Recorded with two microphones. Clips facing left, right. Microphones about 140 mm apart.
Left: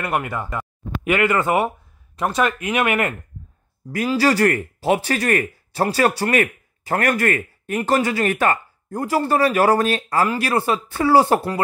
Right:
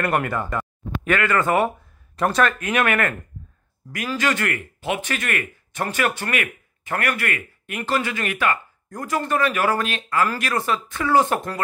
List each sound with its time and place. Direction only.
0.0 s speech: 10° left (ahead or behind)
3.9 s speech: 30° left (ahead or behind)